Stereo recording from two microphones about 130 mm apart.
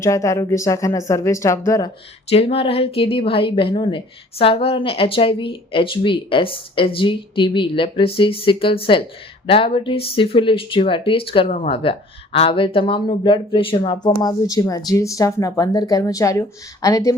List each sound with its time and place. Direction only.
0.0 s speech: 25° left (ahead or behind)
2.3 s a woman's voice: 50° left (ahead or behind); by 17.2 s 25° left (ahead or behind)